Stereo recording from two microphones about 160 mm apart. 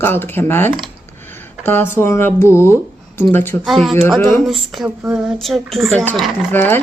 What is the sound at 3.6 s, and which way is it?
Speech, centre (ahead or behind).